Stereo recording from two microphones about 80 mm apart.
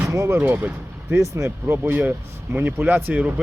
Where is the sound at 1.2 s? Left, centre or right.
Right.